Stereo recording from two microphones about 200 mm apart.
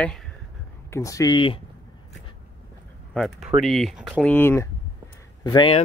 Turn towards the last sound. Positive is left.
turn(degrees=25)  # may be behind; listen again after turning